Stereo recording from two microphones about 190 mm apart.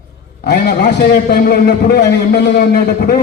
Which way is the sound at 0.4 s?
60° left (ahead or behind).